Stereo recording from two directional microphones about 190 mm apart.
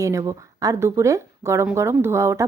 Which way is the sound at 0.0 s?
15° right (ahead or behind).